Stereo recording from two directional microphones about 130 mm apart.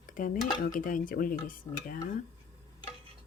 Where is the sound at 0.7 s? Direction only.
90° left.